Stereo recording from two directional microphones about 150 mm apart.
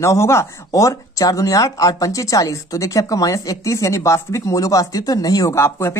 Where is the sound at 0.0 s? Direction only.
20° left (ahead or behind).